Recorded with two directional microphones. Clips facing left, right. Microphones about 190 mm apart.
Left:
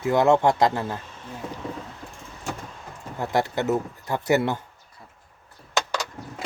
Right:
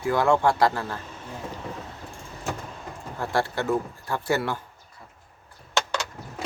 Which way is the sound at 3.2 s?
20° left (ahead or behind).